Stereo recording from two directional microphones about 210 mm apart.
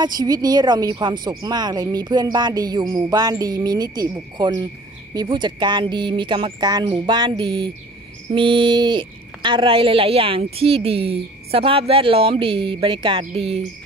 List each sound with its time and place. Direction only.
0.0 s a woman's voice: 20° right (ahead or behind)